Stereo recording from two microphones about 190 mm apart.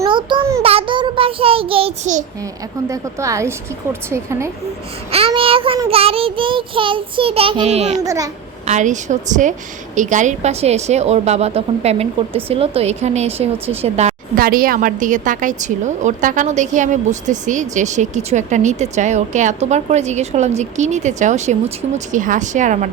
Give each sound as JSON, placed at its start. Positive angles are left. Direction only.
{"t": 0.0, "sound": "child singing", "side_deg": -25}
{"t": 2.9, "sound": "a woman's voice", "side_deg": -15}
{"t": 5.1, "sound": "child singing", "side_deg": -30}
{"t": 8.0, "sound": "a woman's voice", "side_deg": -15}
{"t": 8.6, "sound": "a woman's voice", "side_deg": -40}
{"t": 14.3, "sound": "a woman's voice", "side_deg": -50}